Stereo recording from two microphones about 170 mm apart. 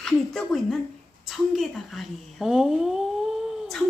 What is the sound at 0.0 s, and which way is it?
Speech, centre (ahead or behind).